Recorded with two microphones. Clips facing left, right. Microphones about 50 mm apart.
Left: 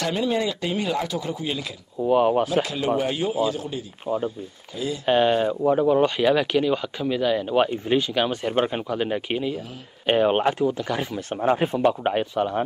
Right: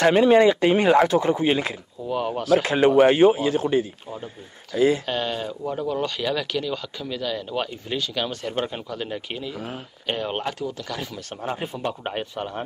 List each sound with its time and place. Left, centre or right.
0.0 s speech: right
2.0 s speech: left
2.5 s speech: right
4.1 s speech: centre
4.7 s speech: right
5.0 s speech: left
11.8 s speech: centre